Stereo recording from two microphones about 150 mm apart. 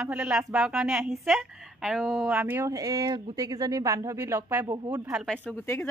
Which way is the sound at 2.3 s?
10° right (ahead or behind).